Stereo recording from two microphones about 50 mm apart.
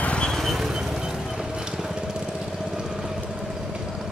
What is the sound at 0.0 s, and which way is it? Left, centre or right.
Vehicle, left.